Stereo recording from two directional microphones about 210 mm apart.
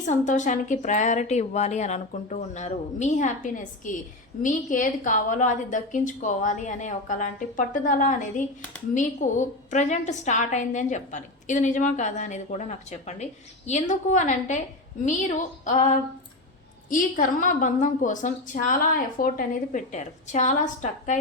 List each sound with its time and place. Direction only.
0.0 s a woman's voice: 35° left (ahead or behind)
16.9 s a woman's voice: 40° left (ahead or behind)